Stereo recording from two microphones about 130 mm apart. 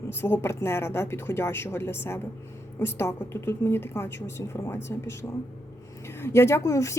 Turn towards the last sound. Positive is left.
turn(degrees=25)  # may be behind; listen again after turning